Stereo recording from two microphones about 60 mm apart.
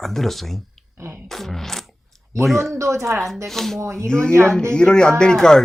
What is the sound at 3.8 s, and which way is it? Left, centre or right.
Speech, right.